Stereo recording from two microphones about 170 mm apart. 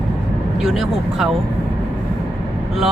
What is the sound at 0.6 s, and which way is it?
Speech, centre (ahead or behind).